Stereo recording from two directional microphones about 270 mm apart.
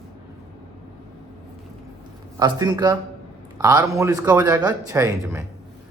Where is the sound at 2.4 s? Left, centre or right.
Centre.